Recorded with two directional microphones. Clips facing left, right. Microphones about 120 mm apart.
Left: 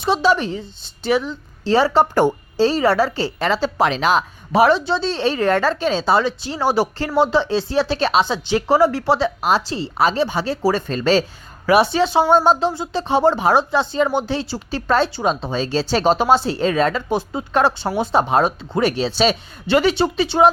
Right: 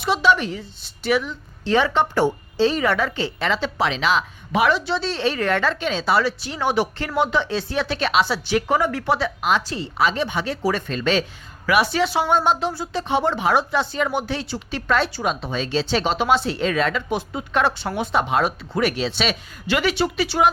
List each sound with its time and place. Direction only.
0.0 s a woman's voice: 30° left (ahead or behind)